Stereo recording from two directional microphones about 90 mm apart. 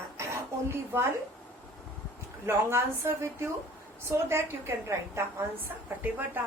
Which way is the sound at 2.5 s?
30° right (ahead or behind).